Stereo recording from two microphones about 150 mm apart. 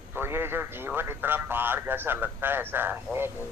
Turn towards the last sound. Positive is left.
turn(degrees=-15)  # may be behind; listen again after turning